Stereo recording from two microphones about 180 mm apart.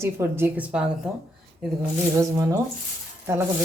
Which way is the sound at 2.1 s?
15° right (ahead or behind).